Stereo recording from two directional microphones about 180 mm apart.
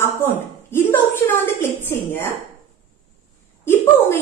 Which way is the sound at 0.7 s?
10° left (ahead or behind).